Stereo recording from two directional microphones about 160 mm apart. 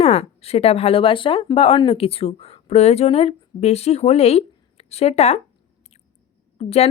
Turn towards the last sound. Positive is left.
turn(degrees=40)  # may be behind; listen again after turning